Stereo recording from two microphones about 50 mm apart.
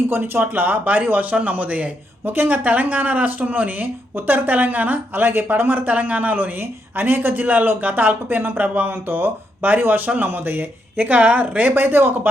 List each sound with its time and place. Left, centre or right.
0.1 s speech: right
2.2 s speech: right
11.7 s speech: right